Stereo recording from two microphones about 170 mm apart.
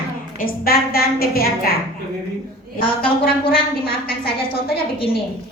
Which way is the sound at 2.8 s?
30° left (ahead or behind).